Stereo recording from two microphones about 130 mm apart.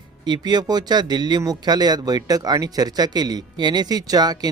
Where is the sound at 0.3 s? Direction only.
30° right (ahead or behind).